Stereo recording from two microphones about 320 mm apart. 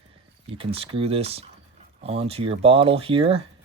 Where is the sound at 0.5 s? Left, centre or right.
Centre.